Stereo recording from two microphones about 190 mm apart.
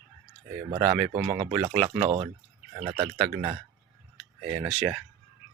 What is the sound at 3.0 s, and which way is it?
Speech, 15° right (ahead or behind).